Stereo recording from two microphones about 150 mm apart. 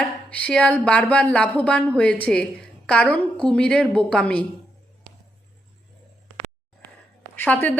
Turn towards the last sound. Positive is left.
turn(degrees=10)  # may be behind; listen again after turning